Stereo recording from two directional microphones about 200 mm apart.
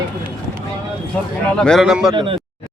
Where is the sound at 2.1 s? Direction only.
25° right (ahead or behind).